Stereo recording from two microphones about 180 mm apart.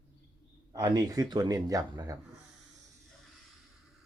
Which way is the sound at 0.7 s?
20° right (ahead or behind).